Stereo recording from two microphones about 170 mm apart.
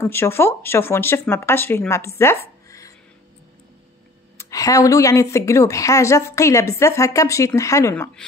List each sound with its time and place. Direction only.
0.0 s a woman's voice: 15° left (ahead or behind)
2.4 s a sound: 20° left (ahead or behind)
4.4 s a woman's voice: 20° left (ahead or behind)